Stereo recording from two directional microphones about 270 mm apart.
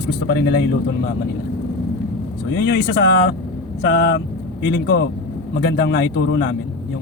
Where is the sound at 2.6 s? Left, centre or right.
Left.